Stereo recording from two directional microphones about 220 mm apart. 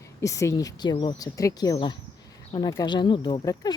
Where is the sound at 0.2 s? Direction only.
15° left (ahead or behind).